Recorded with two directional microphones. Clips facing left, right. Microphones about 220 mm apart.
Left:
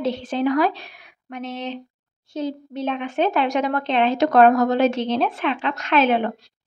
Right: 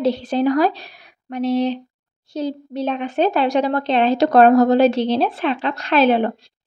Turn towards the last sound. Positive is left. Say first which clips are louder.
# right 3 dB
turn(degrees=-35)  # may be behind; listen again after turning